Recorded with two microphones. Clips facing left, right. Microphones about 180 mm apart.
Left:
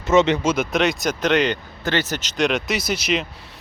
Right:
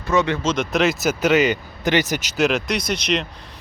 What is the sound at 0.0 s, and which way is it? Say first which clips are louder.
Speech: left 3 dB; 20° left (ahead or behind).